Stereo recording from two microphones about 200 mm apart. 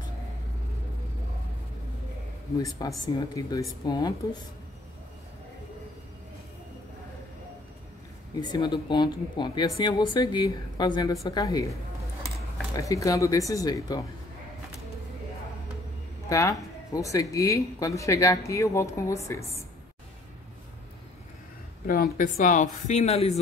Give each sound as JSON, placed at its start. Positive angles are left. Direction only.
{"t": 2.8, "sound": "a woman's voice", "side_deg": 20}
{"t": 8.4, "sound": "a woman's voice", "side_deg": 20}
{"t": 12.7, "sound": "speech", "side_deg": 15}
{"t": 16.3, "sound": "speech", "side_deg": 15}
{"t": 21.8, "sound": "speech", "side_deg": 45}